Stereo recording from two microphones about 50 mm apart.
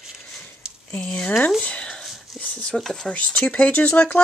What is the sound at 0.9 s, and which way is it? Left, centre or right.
Speech, centre.